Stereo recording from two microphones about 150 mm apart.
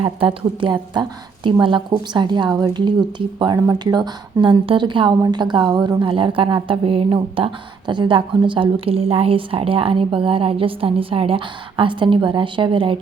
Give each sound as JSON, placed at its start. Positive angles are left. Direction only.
{"t": 0.0, "sound": "a woman's voice", "side_deg": -35}